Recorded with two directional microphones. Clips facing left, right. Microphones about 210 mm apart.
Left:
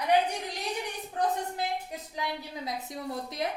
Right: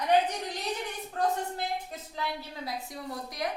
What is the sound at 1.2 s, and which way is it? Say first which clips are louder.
Speech: even; 20° left (ahead or behind).